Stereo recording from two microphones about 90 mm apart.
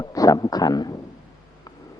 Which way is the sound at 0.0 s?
40° left (ahead or behind).